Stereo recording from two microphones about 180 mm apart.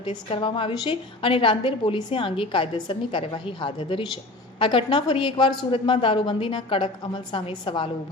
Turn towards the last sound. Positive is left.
turn(degrees=30)  # may be behind; listen again after turning